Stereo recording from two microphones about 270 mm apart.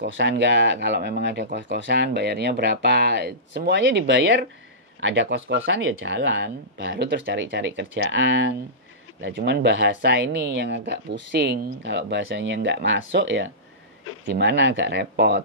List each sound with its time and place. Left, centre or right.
0.0 s speech: right